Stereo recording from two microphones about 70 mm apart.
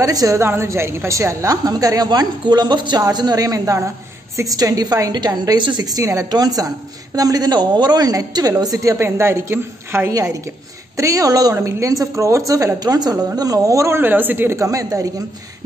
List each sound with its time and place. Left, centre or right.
0.0 s a woman's voice: right
0.4 s a woman's voice: right
1.7 s a woman's voice: right
4.4 s a woman's voice: right
8.9 s a woman's voice: right
10.1 s a woman's voice: right
11.5 s a woman's voice: right
13.4 s speech: right
14.0 s a man's voice: right
14.6 s a woman's voice: right